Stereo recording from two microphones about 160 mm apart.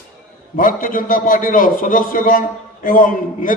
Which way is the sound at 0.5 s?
60° left (ahead or behind).